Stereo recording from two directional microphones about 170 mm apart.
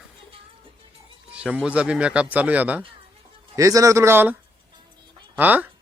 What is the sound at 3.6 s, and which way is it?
Speech, 20° right (ahead or behind).